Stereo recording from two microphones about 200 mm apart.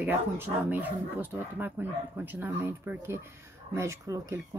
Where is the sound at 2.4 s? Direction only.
10° right (ahead or behind).